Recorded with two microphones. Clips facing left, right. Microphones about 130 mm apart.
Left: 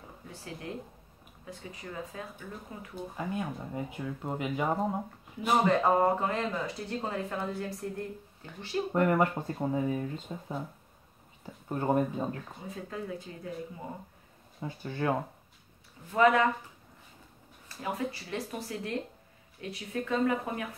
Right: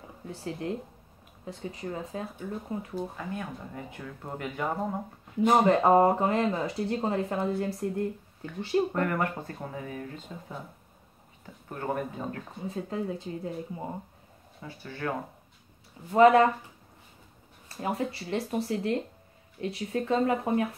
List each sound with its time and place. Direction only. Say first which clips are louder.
0.3 s speech: right 7 dB; 30° right (ahead or behind)
3.2 s speech: left 2 dB; 15° left (ahead or behind)
5.4 s speech: right 4 dB; 25° right (ahead or behind)
8.9 s speech: left 3 dB; 20° left (ahead or behind)
11.7 s speech: left 4 dB; 20° left (ahead or behind)
12.6 s speech: right 6 dB; 30° right (ahead or behind)
14.6 s speech: left 3 dB; 20° left (ahead or behind)
16.1 s speech: right 5 dB; 30° right (ahead or behind)
17.7 s speech: right 3 dB; 35° right (ahead or behind)